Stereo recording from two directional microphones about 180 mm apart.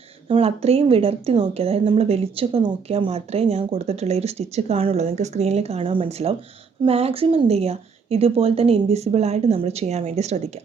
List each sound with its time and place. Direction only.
0.3 s speech: 35° right (ahead or behind)